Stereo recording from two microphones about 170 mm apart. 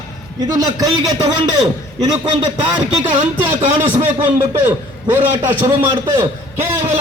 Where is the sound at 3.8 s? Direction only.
10° right (ahead or behind).